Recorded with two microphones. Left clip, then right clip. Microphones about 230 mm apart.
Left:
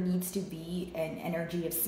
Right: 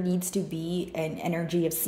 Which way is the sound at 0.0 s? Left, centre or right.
Right.